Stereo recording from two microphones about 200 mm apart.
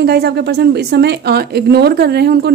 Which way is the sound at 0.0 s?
50° right (ahead or behind).